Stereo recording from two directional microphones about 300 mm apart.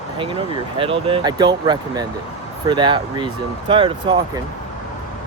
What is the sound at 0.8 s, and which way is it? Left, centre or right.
Speech, centre.